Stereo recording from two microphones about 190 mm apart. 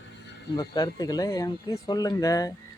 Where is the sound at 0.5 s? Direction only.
20° left (ahead or behind).